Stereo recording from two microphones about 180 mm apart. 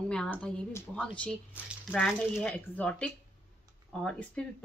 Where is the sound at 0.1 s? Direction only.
5° left (ahead or behind).